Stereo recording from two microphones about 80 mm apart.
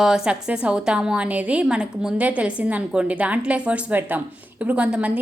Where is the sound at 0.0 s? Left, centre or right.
Centre.